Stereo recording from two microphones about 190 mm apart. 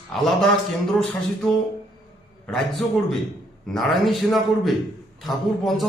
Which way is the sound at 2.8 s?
Centre (ahead or behind).